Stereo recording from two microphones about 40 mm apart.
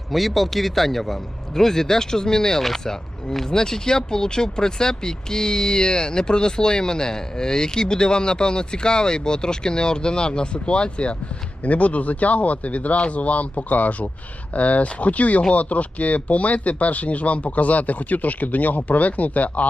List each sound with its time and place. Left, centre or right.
0.1 s a man's voice: centre; by 19.6 s left